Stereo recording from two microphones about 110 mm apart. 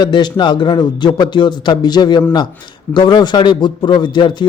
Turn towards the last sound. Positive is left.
turn(degrees=45)  # may be behind; listen again after turning